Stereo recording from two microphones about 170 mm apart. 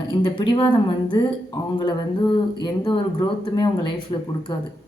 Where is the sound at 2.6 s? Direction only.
25° left (ahead or behind).